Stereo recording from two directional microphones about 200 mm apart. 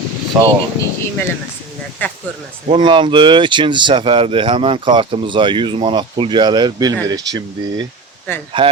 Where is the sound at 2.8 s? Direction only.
25° right (ahead or behind).